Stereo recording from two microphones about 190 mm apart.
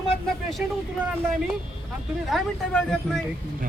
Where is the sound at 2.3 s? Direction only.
5° left (ahead or behind).